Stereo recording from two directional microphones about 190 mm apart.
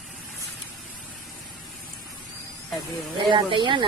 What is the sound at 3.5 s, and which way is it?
Speech, 25° right (ahead or behind).